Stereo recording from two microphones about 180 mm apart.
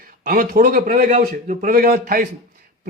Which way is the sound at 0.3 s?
55° right (ahead or behind).